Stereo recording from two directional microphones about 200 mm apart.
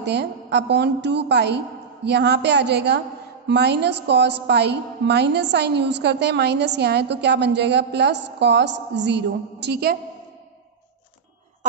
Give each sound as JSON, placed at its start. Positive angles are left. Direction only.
{"t": 0.0, "sound": "a woman's voice", "side_deg": -60}